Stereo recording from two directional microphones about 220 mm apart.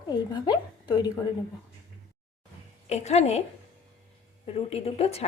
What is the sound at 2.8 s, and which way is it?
Speech, 30° left (ahead or behind).